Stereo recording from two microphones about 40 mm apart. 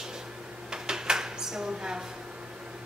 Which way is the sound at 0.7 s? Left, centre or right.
Centre.